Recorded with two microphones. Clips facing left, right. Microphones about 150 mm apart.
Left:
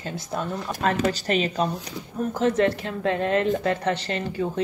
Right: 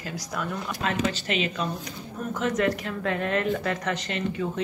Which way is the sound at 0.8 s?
40° left (ahead or behind).